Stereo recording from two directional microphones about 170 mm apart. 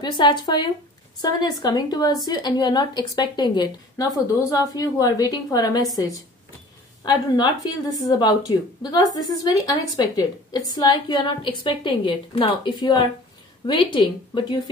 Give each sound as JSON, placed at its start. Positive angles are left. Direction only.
{"t": 0.0, "sound": "a woman's voice", "side_deg": 25}